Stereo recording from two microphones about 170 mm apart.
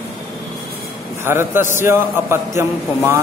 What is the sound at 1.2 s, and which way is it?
Speech, 15° right (ahead or behind).